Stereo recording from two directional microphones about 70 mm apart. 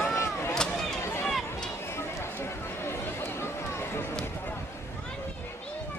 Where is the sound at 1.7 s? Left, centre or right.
Left.